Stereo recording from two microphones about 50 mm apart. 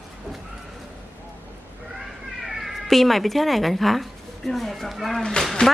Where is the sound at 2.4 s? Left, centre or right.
Centre.